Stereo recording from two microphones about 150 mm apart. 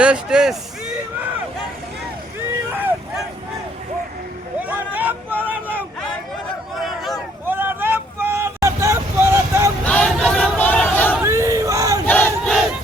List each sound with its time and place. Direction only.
0.0 s speech: 5° right (ahead or behind)
4.7 s vehicle: 10° right (ahead or behind)
6.7 s a sound: centre (ahead or behind)
7.4 s vehicle: 15° right (ahead or behind)
9.8 s a sound: 10° left (ahead or behind)
11.2 s crowd: 20° right (ahead or behind)
12.0 s battle cry: 10° left (ahead or behind)